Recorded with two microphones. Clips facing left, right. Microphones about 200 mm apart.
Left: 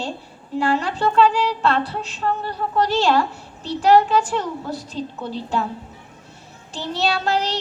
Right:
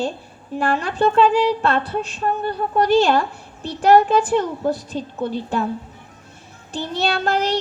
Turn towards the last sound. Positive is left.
turn(degrees=-55)  # may be behind; listen again after turning